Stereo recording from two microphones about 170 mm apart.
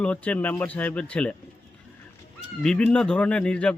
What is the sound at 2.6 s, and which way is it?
Speech, 5° left (ahead or behind).